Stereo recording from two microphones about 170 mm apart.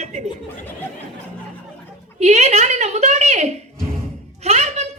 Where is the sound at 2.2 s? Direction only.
40° right (ahead or behind).